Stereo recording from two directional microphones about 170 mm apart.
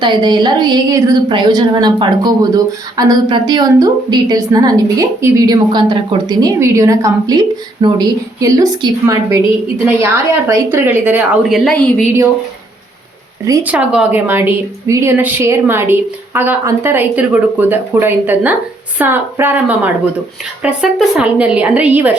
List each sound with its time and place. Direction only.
0.0 s a woman's voice: 25° right (ahead or behind); by 12.0 s 5° left (ahead or behind)
13.4 s a woman's voice: 15° right (ahead or behind)